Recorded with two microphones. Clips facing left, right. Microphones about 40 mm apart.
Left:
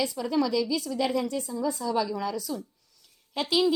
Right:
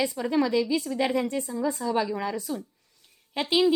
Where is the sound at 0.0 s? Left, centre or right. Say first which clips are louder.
Right 2 dB; right.